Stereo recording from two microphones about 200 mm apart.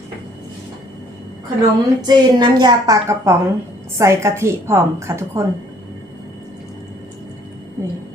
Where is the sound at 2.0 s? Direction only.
20° right (ahead or behind).